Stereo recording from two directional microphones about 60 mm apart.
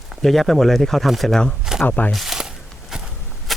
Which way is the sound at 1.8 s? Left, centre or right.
Left.